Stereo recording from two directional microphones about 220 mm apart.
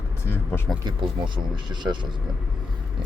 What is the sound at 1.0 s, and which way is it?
Speech, 20° right (ahead or behind).